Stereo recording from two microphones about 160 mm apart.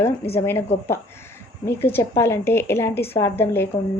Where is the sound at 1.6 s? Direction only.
15° left (ahead or behind).